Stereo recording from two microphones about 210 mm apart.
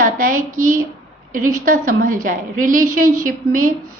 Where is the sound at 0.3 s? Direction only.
85° right.